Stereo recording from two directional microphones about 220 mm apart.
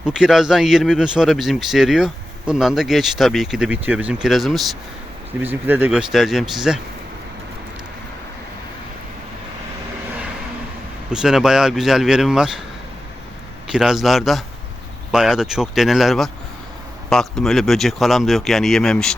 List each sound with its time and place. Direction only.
0.0 s speech: centre (ahead or behind)
11.1 s speech: 5° right (ahead or behind)
13.7 s speech: 5° right (ahead or behind)